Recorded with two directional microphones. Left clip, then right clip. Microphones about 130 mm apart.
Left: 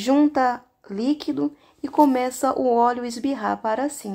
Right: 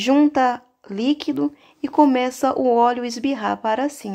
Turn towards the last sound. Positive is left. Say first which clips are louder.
# right 2 dB
turn(degrees=-25)  # may be behind; listen again after turning